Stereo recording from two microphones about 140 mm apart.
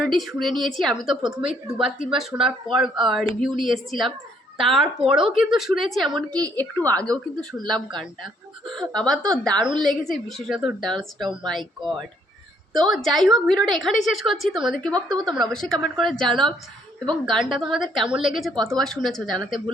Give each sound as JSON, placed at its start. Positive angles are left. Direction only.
{"t": 0.0, "sound": "a woman's voice", "side_deg": 0}
{"t": 6.1, "sound": "a woman's voice", "side_deg": -25}
{"t": 6.6, "sound": "a woman's voice", "side_deg": 10}
{"t": 7.6, "sound": "speech", "side_deg": -30}
{"t": 8.7, "sound": "a woman's voice", "side_deg": 5}